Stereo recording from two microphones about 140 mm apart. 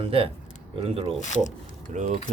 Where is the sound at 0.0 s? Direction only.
40° right (ahead or behind).